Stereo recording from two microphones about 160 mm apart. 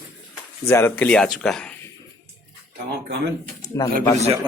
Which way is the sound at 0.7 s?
15° left (ahead or behind).